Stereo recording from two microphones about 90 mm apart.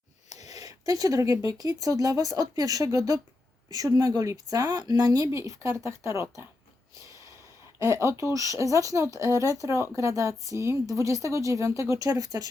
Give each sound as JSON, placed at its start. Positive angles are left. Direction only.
{"t": 0.3, "sound": "a sound", "side_deg": -40}
{"t": 1.5, "sound": "speech", "side_deg": -40}
{"t": 7.0, "sound": "snort", "side_deg": -35}
{"t": 7.8, "sound": "speech", "side_deg": -35}